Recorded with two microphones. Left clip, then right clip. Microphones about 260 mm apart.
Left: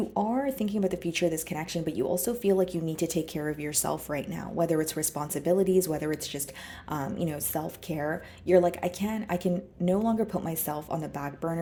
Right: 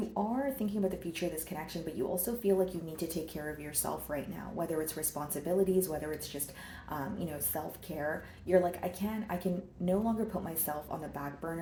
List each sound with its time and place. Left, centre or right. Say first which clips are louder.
0.6 s speech: left 5 dB; left